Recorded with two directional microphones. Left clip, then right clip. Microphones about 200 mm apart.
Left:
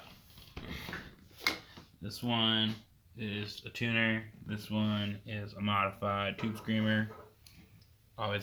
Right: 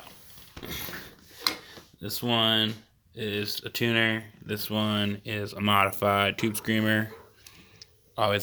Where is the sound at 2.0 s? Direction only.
50° right (ahead or behind).